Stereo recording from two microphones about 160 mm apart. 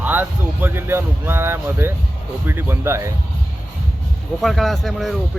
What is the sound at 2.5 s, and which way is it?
Speech, 15° right (ahead or behind).